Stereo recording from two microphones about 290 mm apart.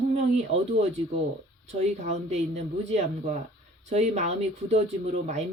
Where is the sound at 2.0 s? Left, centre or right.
Right.